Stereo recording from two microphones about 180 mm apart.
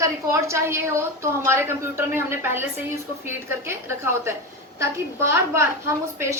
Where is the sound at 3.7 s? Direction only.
15° right (ahead or behind).